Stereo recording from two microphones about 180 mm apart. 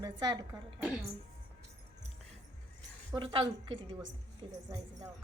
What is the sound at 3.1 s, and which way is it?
Speech, 30° right (ahead or behind).